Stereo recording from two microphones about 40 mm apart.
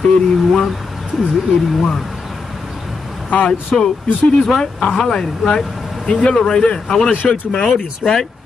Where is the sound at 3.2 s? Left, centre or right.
Left.